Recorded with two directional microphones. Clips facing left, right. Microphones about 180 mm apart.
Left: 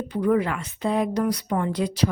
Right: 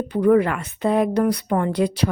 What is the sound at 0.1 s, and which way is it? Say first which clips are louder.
Speech: right 5 dB; 60° right (ahead or behind).